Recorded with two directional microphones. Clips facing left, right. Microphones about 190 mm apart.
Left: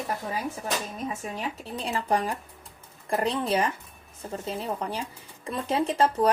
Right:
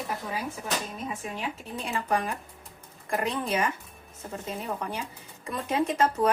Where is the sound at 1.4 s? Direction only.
35° left (ahead or behind).